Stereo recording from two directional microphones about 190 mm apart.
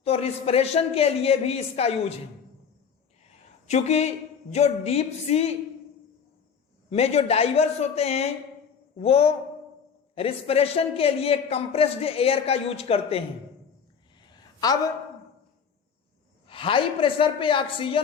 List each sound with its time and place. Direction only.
0.0 s a man's voice: 30° left (ahead or behind)
3.7 s a man's voice: 35° left (ahead or behind)
6.9 s a man's voice: 35° left (ahead or behind)
14.6 s a woman's voice: 20° left (ahead or behind)
16.5 s speech: 30° left (ahead or behind)